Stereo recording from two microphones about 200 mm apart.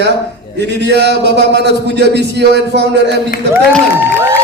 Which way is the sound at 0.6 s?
60° right (ahead or behind).